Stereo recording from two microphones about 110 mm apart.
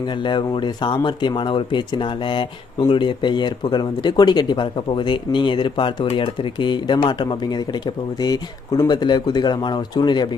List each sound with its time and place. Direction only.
0.2 s speech: 45° left (ahead or behind)